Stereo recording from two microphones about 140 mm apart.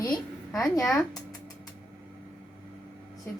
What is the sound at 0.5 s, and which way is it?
Speech, 20° left (ahead or behind).